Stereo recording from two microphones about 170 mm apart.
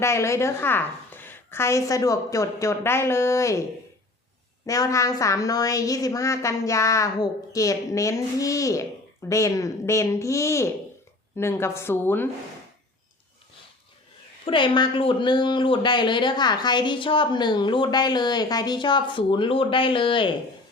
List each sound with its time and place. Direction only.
0.0 s a woman's voice: 15° left (ahead or behind)
4.6 s a woman's voice: 20° left (ahead or behind)
14.4 s speech: 30° left (ahead or behind)